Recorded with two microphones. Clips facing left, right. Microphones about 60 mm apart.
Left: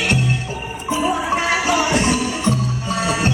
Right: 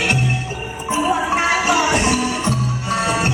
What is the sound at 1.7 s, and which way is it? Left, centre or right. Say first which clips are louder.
Music: right 1 dB; right.